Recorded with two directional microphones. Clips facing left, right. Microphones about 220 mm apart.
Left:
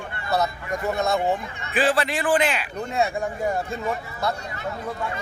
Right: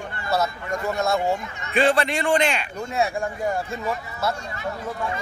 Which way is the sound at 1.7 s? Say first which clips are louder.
Right 2 dB; 5° left (ahead or behind).